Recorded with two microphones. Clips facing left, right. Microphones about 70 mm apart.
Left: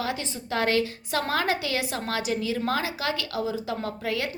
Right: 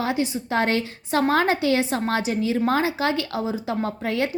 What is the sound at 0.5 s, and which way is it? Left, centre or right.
A woman's voice, right.